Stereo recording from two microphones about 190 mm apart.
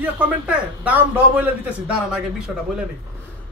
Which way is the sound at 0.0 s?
10° right (ahead or behind).